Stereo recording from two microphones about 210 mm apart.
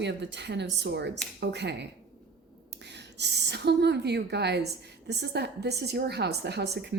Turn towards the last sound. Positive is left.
turn(degrees=-50)  # may be behind; listen again after turning